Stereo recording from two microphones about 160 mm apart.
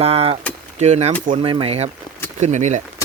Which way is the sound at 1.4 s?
30° right (ahead or behind).